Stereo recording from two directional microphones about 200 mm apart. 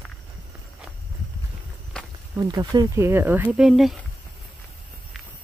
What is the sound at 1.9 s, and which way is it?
Walk, 5° left (ahead or behind).